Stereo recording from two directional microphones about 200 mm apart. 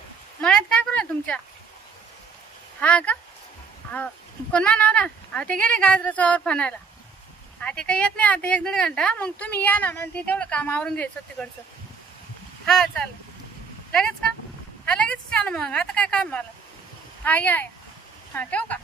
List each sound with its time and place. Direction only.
0.4 s a sound: 5° left (ahead or behind)
2.8 s speech: 5° left (ahead or behind)
12.6 s speech: 5° left (ahead or behind)
14.9 s speech: 5° left (ahead or behind)